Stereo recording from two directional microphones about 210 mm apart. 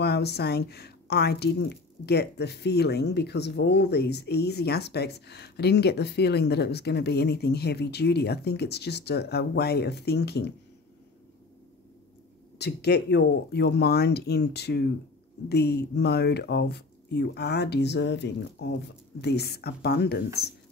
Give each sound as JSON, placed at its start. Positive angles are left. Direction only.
{"t": 0.0, "sound": "speech", "side_deg": 50}
{"t": 12.5, "sound": "speech", "side_deg": 50}